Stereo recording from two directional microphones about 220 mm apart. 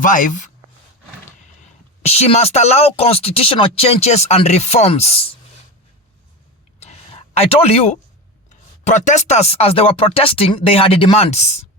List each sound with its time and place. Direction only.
0.0 s speech: 35° left (ahead or behind)
2.0 s speech: 30° left (ahead or behind)
6.7 s a sound: 30° left (ahead or behind)
8.4 s speech: 35° left (ahead or behind)